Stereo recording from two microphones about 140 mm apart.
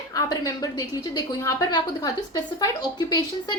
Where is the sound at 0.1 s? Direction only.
25° left (ahead or behind).